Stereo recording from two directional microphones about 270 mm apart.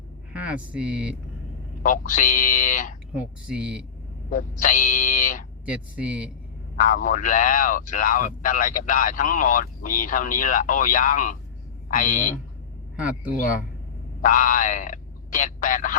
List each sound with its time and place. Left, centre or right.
0.3 s speech: centre
1.8 s a man's voice: left
3.2 s speech: centre
4.3 s a man's voice: left
5.6 s speech: centre
6.7 s a man's voice: left
14.2 s speech: left